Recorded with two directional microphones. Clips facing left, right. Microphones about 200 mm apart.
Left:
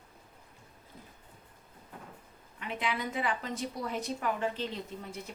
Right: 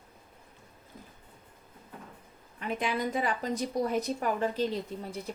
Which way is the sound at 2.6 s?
45° right (ahead or behind).